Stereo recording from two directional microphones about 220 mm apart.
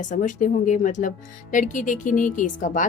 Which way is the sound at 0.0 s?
35° left (ahead or behind).